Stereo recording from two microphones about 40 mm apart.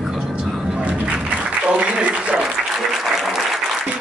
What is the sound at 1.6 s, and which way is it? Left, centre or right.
Speech, right.